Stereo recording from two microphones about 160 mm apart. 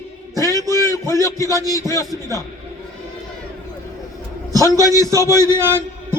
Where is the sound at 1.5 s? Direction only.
20° right (ahead or behind).